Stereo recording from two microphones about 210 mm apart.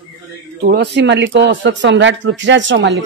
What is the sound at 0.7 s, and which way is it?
Speech, 55° right (ahead or behind).